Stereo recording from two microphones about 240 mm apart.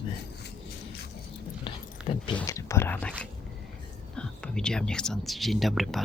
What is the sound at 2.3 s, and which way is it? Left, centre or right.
Speech, centre.